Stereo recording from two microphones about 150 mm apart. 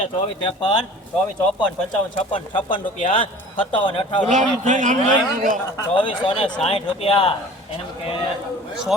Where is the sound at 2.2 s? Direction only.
35° left (ahead or behind).